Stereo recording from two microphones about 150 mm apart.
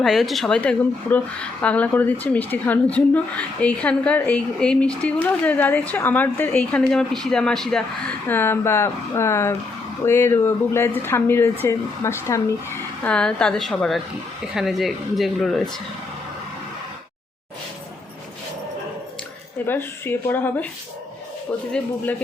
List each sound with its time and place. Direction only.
0.0 s a woman's voice: centre (ahead or behind)
13.1 s speech: 5° left (ahead or behind)
19.6 s a woman's voice: 15° left (ahead or behind)